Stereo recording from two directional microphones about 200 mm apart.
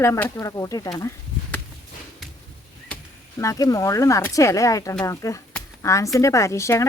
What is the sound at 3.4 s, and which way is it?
Speech, 15° left (ahead or behind).